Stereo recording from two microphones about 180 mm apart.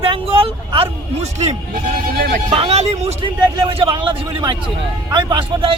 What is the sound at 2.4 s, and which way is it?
A man's voice, 30° right (ahead or behind).